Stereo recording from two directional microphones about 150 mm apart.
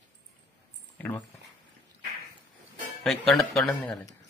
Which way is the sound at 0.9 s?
10° left (ahead or behind).